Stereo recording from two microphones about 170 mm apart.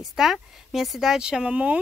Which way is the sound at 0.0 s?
Centre (ahead or behind).